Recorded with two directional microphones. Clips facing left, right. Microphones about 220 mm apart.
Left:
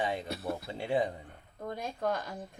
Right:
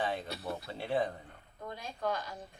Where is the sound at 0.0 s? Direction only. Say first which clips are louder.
Left 2 dB; 15° left (ahead or behind).